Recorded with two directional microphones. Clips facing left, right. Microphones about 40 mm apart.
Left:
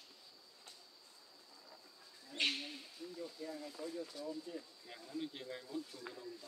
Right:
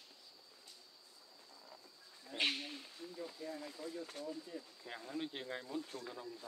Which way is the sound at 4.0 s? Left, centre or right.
Right.